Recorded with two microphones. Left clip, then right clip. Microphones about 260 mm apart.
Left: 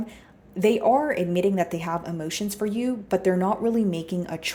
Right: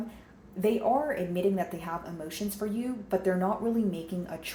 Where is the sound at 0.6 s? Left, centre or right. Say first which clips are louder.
Left 6 dB; left.